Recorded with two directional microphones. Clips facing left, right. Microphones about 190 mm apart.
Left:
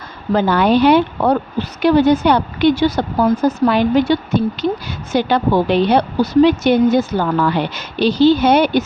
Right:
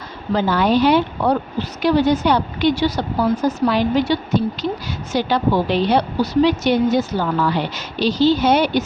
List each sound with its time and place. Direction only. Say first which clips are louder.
0.3 s a woman's voice: left 3 dB; 60° left (ahead or behind)